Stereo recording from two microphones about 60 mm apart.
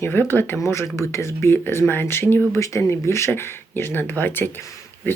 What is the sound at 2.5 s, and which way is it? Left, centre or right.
Speech, left.